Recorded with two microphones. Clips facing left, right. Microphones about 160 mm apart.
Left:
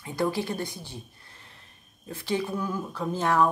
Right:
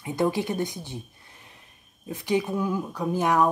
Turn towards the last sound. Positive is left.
turn(degrees=-15)  # may be behind; listen again after turning